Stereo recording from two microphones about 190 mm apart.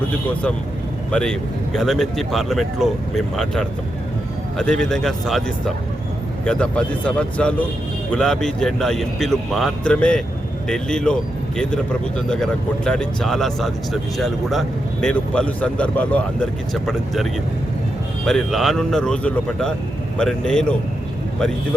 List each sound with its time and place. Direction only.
1.1 s speech: 5° left (ahead or behind)
18.3 s speech: centre (ahead or behind)